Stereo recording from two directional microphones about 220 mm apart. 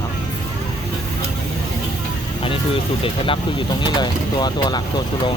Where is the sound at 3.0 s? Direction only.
25° left (ahead or behind).